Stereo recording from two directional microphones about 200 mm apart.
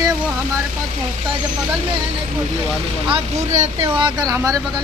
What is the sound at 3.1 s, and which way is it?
Speech, 30° right (ahead or behind).